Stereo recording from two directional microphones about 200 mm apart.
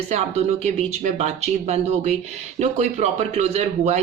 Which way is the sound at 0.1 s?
35° right (ahead or behind).